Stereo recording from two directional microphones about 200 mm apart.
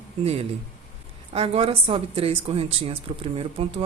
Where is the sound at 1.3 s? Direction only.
30° right (ahead or behind).